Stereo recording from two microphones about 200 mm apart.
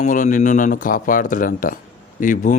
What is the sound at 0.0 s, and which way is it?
A man's voice, 40° left (ahead or behind).